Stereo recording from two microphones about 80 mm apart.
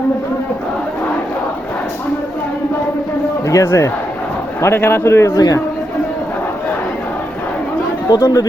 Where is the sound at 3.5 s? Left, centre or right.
Left.